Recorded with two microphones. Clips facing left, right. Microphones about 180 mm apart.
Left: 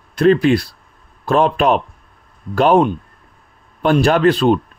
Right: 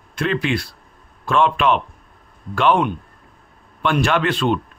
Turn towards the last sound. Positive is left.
turn(degrees=40)  # may be behind; listen again after turning